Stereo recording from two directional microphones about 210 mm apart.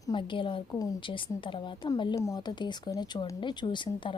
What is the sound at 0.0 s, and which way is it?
Speech, 20° left (ahead or behind).